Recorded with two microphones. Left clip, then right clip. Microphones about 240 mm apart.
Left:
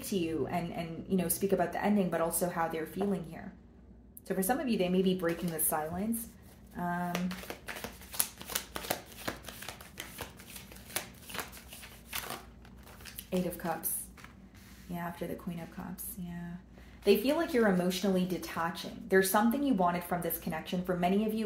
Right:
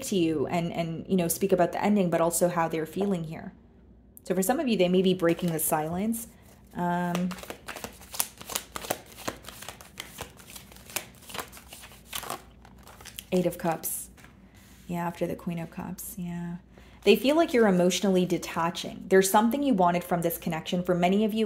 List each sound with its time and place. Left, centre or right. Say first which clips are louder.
0.1 s speech: right 7 dB; right
7.1 s a sound: right 4 dB; right
14.9 s speech: right 8 dB; right